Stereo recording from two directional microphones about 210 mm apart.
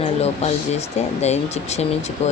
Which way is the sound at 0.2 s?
30° left (ahead or behind).